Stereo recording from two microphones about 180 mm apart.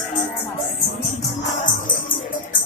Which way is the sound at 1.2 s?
45° left (ahead or behind).